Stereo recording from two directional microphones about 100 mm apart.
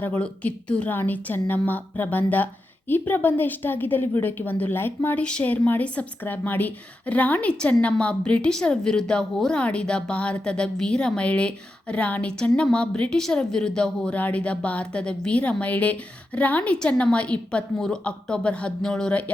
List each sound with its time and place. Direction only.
0.0 s a woman's voice: 15° left (ahead or behind)